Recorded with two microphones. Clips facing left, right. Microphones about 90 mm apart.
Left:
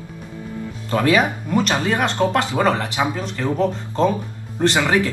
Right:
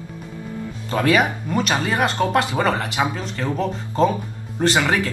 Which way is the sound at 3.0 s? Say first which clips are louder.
Even; 5° right (ahead or behind).